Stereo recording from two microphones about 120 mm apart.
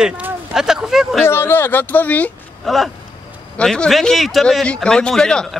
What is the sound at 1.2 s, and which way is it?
Speech, 20° left (ahead or behind).